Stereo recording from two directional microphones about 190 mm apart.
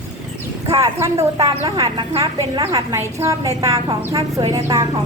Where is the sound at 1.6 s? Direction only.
20° right (ahead or behind).